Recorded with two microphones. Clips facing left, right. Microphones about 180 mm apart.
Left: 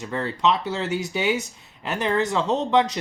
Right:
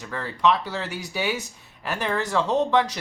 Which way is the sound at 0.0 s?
20° left (ahead or behind).